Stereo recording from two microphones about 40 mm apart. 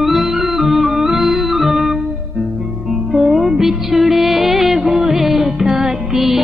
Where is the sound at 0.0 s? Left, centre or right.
Centre.